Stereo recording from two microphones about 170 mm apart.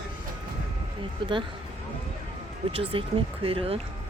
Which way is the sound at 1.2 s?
30° right (ahead or behind).